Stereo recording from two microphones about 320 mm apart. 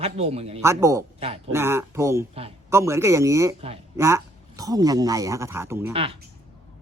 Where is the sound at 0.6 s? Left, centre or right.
Centre.